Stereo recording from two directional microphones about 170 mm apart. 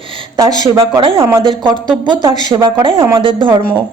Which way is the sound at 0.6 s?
30° right (ahead or behind).